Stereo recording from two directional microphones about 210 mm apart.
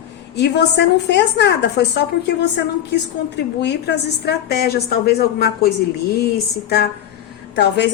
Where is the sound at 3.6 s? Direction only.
55° left (ahead or behind).